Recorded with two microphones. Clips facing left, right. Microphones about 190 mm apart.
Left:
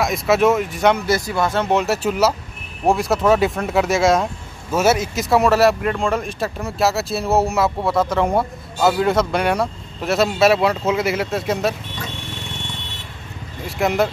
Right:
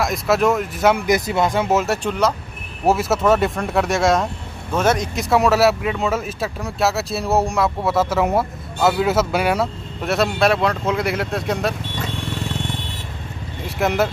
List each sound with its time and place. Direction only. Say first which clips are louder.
0.0 s speech: left 2 dB; centre (ahead or behind)
1.0 s speech: right 1 dB; 20° right (ahead or behind)
1.7 s speech: left 1 dB; centre (ahead or behind)
13.7 s speech: left 1 dB; centre (ahead or behind)